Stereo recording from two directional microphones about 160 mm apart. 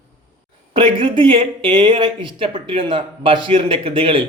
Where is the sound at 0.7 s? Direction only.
30° right (ahead or behind).